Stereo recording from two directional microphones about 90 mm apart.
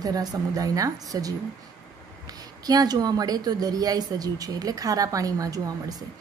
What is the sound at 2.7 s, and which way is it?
A woman's voice, 45° right (ahead or behind).